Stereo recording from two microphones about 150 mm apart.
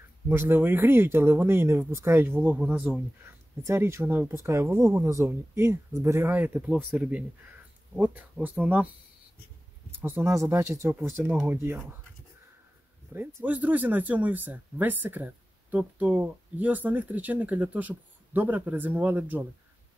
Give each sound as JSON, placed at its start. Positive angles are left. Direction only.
{"t": 0.3, "sound": "speech", "side_deg": -15}
{"t": 9.8, "sound": "speech", "side_deg": -15}
{"t": 13.1, "sound": "speech", "side_deg": -15}